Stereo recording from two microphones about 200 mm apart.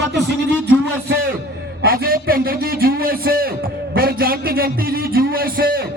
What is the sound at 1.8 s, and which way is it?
A man's voice, 50° right (ahead or behind).